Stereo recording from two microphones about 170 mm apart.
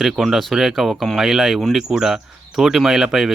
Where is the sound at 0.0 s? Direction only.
Centre (ahead or behind).